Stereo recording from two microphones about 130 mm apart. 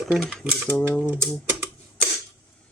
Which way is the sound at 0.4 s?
15° right (ahead or behind).